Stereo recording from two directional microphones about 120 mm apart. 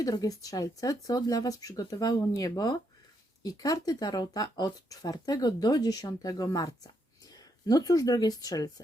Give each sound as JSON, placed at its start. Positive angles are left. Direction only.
{"t": 0.0, "sound": "speech", "side_deg": 30}